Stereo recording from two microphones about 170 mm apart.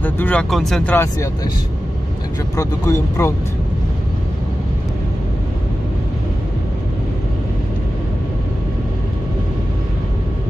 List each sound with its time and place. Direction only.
0.0 s speech: 10° left (ahead or behind)
0.9 s speech: 20° left (ahead or behind)
2.5 s speech: 20° left (ahead or behind)